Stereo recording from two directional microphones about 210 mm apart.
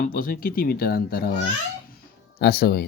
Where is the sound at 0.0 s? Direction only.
40° left (ahead or behind).